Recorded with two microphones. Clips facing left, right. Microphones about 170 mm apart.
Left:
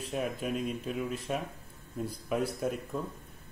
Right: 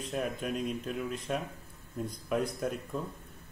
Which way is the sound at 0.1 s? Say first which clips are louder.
Left 1 dB; 5° left (ahead or behind).